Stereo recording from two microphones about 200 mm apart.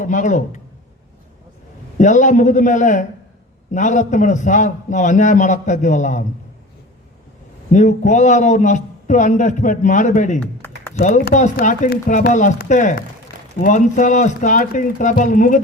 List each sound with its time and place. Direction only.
0.0 s a man's voice: 40° left (ahead or behind)
2.0 s a man's voice: 40° left (ahead or behind)
7.7 s a man's voice: 35° left (ahead or behind)